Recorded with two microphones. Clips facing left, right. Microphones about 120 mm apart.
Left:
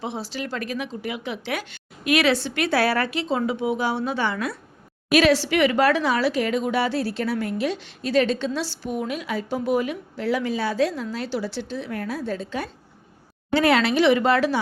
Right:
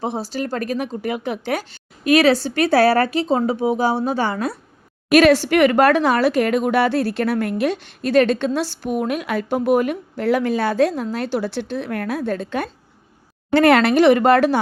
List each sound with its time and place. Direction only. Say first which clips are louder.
0.0 s speech: right 6 dB; 40° right (ahead or behind)
5.1 s a woman's voice: right 5 dB; 50° right (ahead or behind)